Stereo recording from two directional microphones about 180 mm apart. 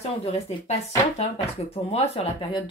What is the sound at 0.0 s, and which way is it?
A woman's voice, 35° left (ahead or behind).